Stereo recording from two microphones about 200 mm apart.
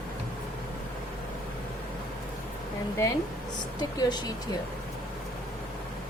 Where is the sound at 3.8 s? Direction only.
20° left (ahead or behind).